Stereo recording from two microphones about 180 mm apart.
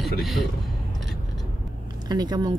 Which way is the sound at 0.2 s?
Centre (ahead or behind).